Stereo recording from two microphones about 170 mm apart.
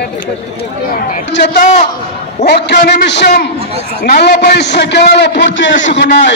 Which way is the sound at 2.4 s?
80° left.